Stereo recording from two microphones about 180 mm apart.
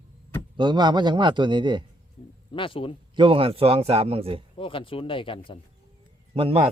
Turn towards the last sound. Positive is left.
turn(degrees=-30)  # may be behind; listen again after turning